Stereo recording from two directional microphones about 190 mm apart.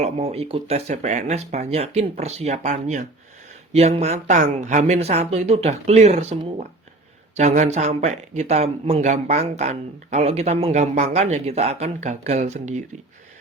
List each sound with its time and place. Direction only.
0.0 s speech: 35° right (ahead or behind)
7.3 s speech: 40° right (ahead or behind)